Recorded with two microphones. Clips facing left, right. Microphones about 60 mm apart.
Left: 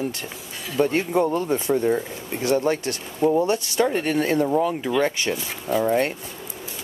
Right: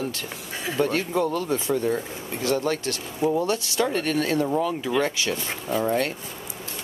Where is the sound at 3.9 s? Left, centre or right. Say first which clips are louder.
Left 2 dB; centre.